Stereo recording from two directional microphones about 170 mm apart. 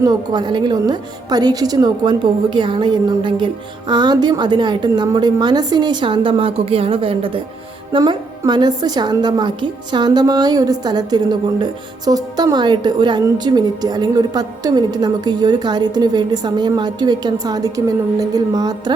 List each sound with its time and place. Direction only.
0.0 s a woman's voice: 25° right (ahead or behind)